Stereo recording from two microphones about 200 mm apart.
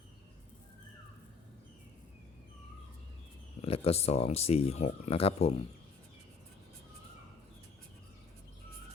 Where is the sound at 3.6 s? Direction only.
30° left (ahead or behind).